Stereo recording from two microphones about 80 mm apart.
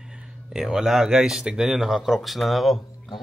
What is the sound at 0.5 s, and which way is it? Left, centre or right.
Speech, centre.